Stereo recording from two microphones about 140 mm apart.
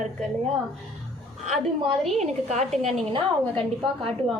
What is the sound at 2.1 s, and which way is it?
Speech, 55° right (ahead or behind).